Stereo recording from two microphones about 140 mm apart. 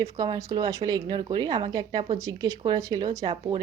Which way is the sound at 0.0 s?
25° right (ahead or behind).